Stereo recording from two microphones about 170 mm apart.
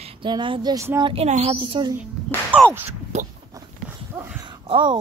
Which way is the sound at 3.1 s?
40° right (ahead or behind).